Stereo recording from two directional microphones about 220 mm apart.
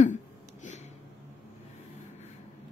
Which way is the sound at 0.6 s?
30° left (ahead or behind).